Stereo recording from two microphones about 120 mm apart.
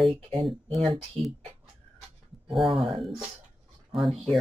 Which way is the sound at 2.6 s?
Centre (ahead or behind).